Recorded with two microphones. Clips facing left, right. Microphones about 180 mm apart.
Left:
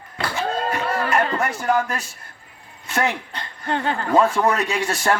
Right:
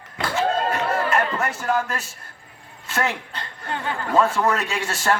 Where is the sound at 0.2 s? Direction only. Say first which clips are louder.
Right 2 dB; 10° left (ahead or behind).